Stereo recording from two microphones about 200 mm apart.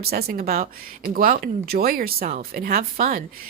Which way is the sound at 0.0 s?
50° right (ahead or behind).